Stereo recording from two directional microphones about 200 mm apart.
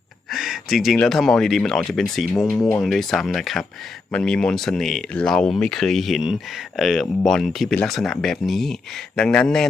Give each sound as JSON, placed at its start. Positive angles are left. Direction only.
{"t": 0.3, "sound": "speech", "side_deg": 0}
{"t": 2.6, "sound": "speech", "side_deg": 15}
{"t": 2.8, "sound": "speech", "side_deg": 0}